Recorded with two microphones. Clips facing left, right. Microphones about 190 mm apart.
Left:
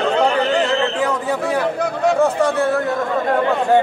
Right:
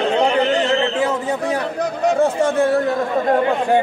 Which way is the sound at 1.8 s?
40° right (ahead or behind).